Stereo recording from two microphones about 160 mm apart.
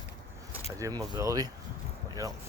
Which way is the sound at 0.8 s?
20° right (ahead or behind).